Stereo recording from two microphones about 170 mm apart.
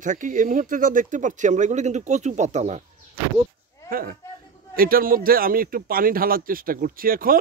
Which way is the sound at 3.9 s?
60° right (ahead or behind).